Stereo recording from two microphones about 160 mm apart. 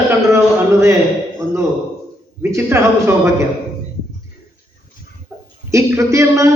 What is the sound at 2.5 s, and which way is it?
Speech, 15° right (ahead or behind).